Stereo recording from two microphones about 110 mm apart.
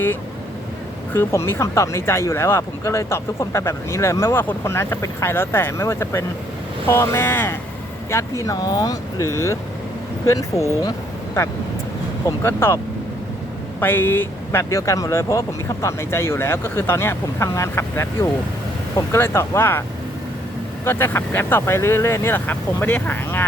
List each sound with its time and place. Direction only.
1.1 s speech: 25° left (ahead or behind)
12.2 s speech: 25° left (ahead or behind)
20.8 s speech: 20° left (ahead or behind)